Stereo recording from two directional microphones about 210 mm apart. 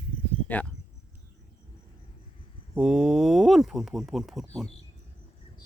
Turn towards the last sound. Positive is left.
turn(degrees=0)  # may be behind; listen again after turning